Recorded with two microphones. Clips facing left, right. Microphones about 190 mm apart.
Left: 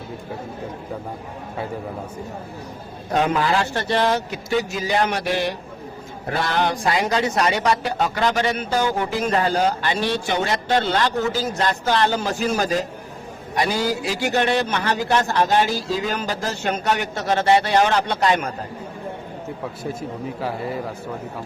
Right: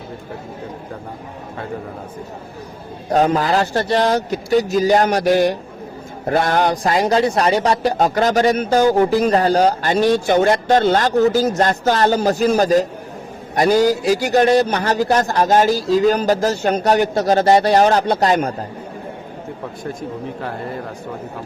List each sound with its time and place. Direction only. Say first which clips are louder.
3.1 s a man's voice: right 4 dB; 40° right (ahead or behind)
19.8 s speech: right 3 dB; 5° left (ahead or behind)